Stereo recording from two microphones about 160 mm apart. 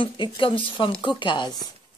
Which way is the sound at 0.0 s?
30° left (ahead or behind).